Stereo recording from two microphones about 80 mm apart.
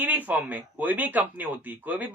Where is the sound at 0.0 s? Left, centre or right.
Right.